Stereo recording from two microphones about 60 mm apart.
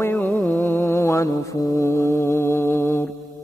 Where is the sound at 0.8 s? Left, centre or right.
Left.